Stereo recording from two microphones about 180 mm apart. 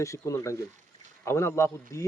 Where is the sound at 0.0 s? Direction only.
15° left (ahead or behind).